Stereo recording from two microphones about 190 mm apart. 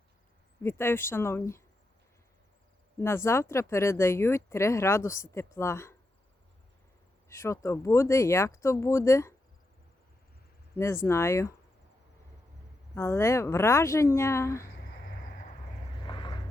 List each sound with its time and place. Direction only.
0.6 s speech: 10° left (ahead or behind)
3.0 s speech: 15° left (ahead or behind)
7.3 s speech: 15° left (ahead or behind)
10.8 s speech: 15° left (ahead or behind)
12.9 s speech: 15° left (ahead or behind)
14.8 s a sound: 90° left
16.0 s vehicle: 25° left (ahead or behind)